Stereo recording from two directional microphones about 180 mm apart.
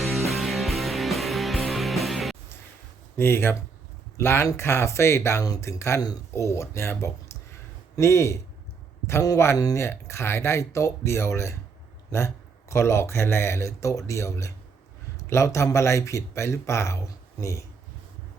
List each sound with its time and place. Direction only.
0.0 s music: centre (ahead or behind)
3.2 s speech: 15° left (ahead or behind)